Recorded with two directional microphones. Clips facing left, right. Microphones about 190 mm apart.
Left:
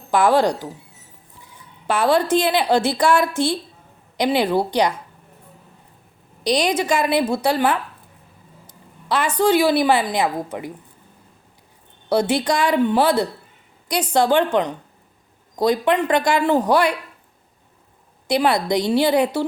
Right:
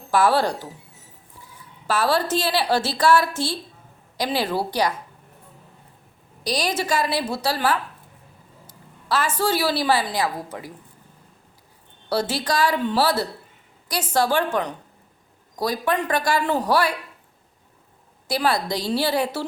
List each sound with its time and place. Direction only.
0.1 s a woman's voice: 15° left (ahead or behind)
1.9 s a woman's voice: 20° left (ahead or behind)
6.4 s a woman's voice: 20° left (ahead or behind)
9.4 s a woman's voice: 20° left (ahead or behind)
12.3 s a woman's voice: 25° left (ahead or behind)
18.3 s a woman's voice: 20° left (ahead or behind)